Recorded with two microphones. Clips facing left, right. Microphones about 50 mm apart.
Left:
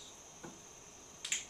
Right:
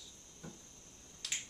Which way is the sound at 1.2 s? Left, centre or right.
Centre.